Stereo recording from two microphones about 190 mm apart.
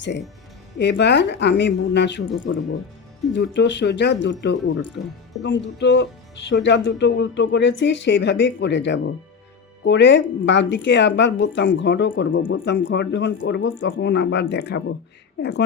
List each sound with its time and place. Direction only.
0.8 s a woman's voice: 65° left (ahead or behind)
3.3 s a woman's voice: 70° left (ahead or behind)